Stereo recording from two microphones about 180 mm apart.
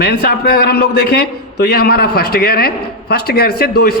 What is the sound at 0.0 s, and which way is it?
A man's voice, 65° left (ahead or behind).